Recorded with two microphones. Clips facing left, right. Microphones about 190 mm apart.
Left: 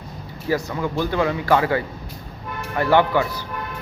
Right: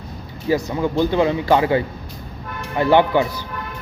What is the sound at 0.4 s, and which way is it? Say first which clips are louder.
Speech: right 3 dB; 20° right (ahead or behind).